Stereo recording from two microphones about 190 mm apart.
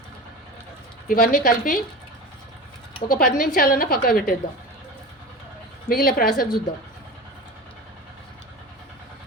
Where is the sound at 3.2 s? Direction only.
50° left (ahead or behind).